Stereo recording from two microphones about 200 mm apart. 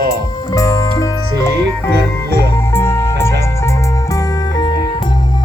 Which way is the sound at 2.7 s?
15° left (ahead or behind).